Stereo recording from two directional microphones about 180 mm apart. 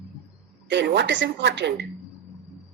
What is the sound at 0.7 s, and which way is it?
Speech, 75° right (ahead or behind).